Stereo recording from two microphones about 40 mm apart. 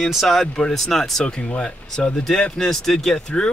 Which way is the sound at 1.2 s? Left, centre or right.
Left.